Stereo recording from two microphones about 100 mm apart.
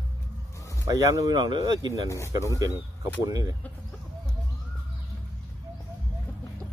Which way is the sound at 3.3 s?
40° right (ahead or behind).